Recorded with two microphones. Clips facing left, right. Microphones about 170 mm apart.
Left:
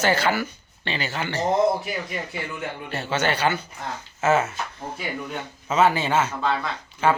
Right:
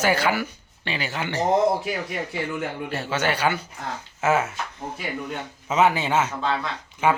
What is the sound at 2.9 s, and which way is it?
Speech, 10° right (ahead or behind).